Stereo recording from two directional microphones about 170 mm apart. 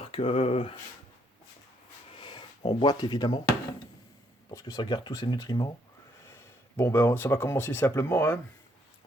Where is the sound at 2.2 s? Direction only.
30° left (ahead or behind).